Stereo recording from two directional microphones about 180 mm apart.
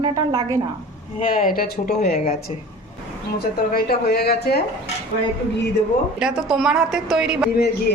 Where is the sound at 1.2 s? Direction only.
50° left (ahead or behind).